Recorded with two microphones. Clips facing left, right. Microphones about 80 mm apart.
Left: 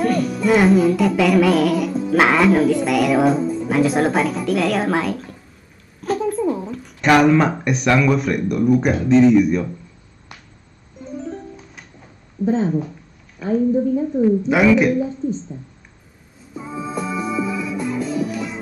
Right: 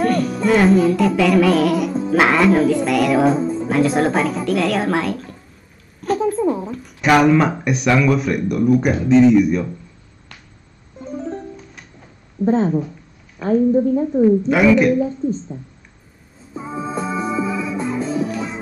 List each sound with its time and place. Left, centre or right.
0.0 s music: centre
2.0 s speech: centre
3.3 s music: right
3.6 s speech: centre
5.9 s a sound: centre
6.6 s speech: centre
11.1 s music: right
11.5 s music: centre
13.4 s a woman's voice: right
14.4 s speech: centre
16.5 s music: right